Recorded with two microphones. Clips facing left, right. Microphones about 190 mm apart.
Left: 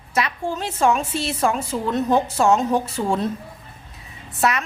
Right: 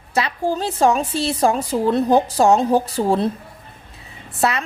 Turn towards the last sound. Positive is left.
turn(degrees=-30)  # may be behind; listen again after turning